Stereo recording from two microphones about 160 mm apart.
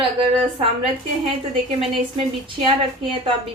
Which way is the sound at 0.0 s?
35° right (ahead or behind).